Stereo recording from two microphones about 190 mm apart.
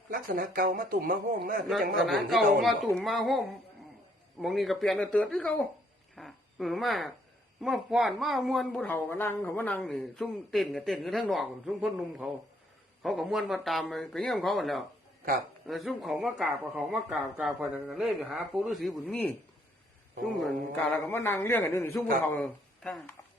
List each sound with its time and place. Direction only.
0.1 s a man's voice: 50° right (ahead or behind)
2.0 s speech: centre (ahead or behind)
21.1 s a man's voice: 10° left (ahead or behind)